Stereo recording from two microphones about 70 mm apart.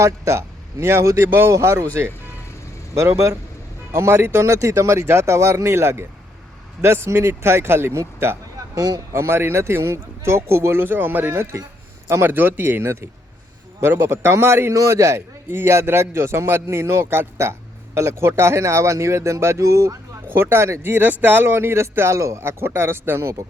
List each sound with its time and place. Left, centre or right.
0.0 s speech: right
2.9 s speech: right
8.5 s a sound: right
9.1 s speech: right
20.2 s speech: right
20.9 s speech: right